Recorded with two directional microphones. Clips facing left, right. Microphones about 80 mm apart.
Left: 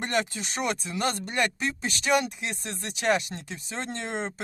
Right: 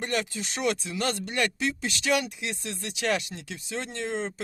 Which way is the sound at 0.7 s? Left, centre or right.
Left.